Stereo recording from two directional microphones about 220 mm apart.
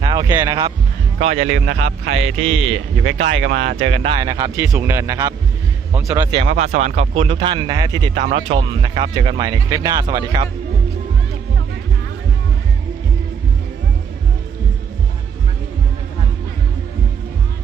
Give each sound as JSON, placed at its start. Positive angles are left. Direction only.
{"t": 0.0, "sound": "speech", "side_deg": -20}
{"t": 1.2, "sound": "speech", "side_deg": -30}
{"t": 1.5, "sound": "a man's voice", "side_deg": -50}
{"t": 2.0, "sound": "music", "side_deg": -65}
{"t": 2.5, "sound": "speech", "side_deg": -25}
{"t": 3.1, "sound": "speech", "side_deg": -60}
{"t": 4.0, "sound": "speech", "side_deg": -20}
{"t": 6.4, "sound": "speech", "side_deg": -30}
{"t": 8.1, "sound": "speech", "side_deg": -30}